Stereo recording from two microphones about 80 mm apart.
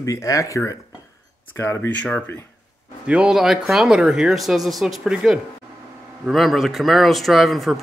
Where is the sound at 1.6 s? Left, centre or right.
Left.